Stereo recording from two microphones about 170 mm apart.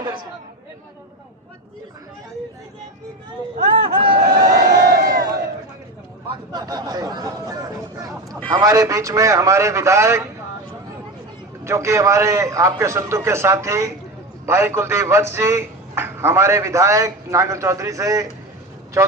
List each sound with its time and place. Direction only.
3.8 s speech: 30° right (ahead or behind)
4.3 s crowd: 65° right (ahead or behind)
6.3 s a man's voice: 25° right (ahead or behind)
11.6 s a man's voice: 15° right (ahead or behind)